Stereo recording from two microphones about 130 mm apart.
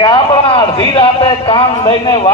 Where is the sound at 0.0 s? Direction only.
40° left (ahead or behind).